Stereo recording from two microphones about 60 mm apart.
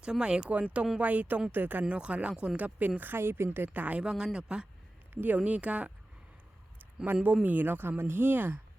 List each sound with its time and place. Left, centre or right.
0.0 s speech: centre; by 1.8 s right
1.9 s speech: right
2.3 s speech: centre
2.6 s speech: right
4.0 s speech: centre
5.1 s speech: right
5.4 s speech: right
7.0 s speech: right